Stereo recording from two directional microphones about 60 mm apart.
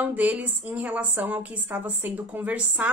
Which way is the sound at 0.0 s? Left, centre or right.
Right.